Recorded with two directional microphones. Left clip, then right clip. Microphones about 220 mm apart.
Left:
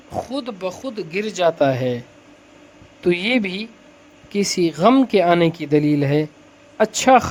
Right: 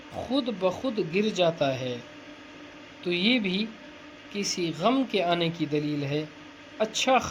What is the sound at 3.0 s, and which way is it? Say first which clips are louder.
Speech: left 7 dB; 80° left.